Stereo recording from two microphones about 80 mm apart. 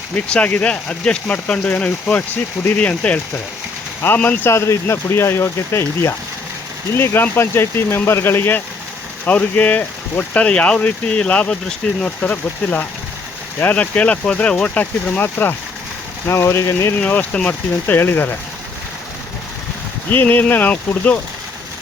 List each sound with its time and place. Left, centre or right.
0.3 s speech: centre
4.4 s speech: left
16.2 s speech: left
17.0 s speech: centre
20.1 s speech: left